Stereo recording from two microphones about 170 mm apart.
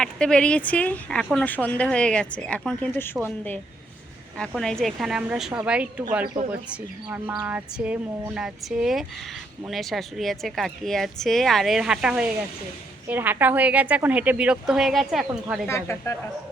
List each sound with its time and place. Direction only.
0.0 s speech: 5° left (ahead or behind)
6.2 s speech: 45° right (ahead or behind)
6.5 s speech: 10° right (ahead or behind)
15.6 s speech: 15° left (ahead or behind)